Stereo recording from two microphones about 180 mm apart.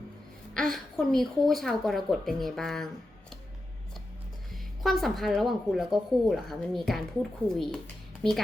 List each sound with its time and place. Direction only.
0.5 s speech: 5° left (ahead or behind)
4.8 s speech: centre (ahead or behind)